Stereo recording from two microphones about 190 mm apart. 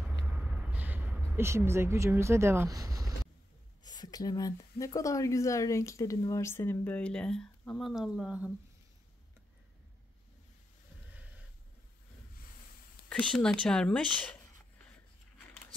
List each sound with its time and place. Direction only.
0.3 s a sound: 10° right (ahead or behind)
3.8 s speech: 20° left (ahead or behind); by 8.5 s 5° right (ahead or behind)
13.1 s speech: 5° left (ahead or behind)